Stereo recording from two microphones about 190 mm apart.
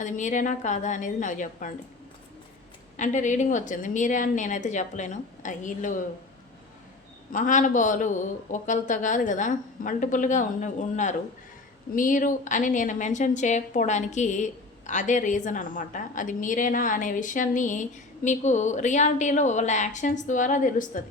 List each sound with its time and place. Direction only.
0.0 s a woman's voice: 40° left (ahead or behind)
3.0 s a woman's voice: 40° left (ahead or behind)
7.3 s a woman's voice: 45° left (ahead or behind)